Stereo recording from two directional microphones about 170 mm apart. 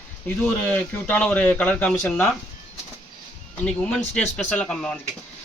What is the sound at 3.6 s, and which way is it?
Speech, 5° left (ahead or behind).